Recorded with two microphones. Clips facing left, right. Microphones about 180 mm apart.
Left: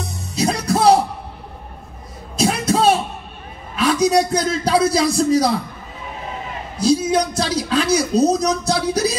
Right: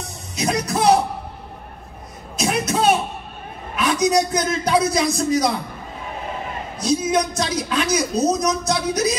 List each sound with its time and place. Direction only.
0.4 s music: 30° left (ahead or behind)
2.3 s a sound: 30° left (ahead or behind)
3.7 s a man's voice: 30° left (ahead or behind)
6.8 s speech: 30° left (ahead or behind)